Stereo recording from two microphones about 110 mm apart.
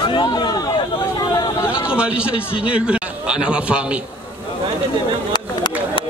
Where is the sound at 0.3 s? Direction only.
35° left (ahead or behind).